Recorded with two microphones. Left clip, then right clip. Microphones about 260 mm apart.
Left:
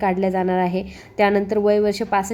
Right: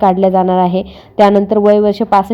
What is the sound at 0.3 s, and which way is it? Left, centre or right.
Speech, right.